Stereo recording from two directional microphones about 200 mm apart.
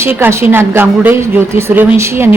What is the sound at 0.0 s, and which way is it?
A woman's voice, 10° right (ahead or behind).